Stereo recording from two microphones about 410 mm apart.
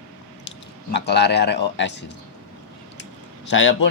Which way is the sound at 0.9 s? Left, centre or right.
Left.